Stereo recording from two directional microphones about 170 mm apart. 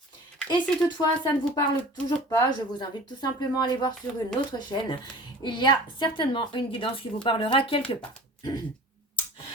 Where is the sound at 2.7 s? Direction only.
25° left (ahead or behind).